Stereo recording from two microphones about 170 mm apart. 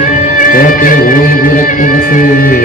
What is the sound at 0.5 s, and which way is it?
Music, 55° left (ahead or behind).